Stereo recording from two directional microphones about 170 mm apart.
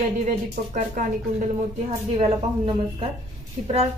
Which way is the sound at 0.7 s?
50° right (ahead or behind).